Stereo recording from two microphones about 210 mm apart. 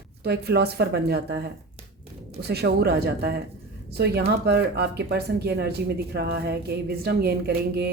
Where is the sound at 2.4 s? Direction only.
50° right (ahead or behind).